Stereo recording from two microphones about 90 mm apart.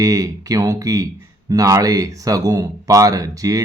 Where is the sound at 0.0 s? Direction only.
40° right (ahead or behind).